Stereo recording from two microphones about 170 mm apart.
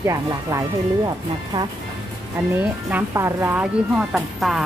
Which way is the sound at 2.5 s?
10° right (ahead or behind).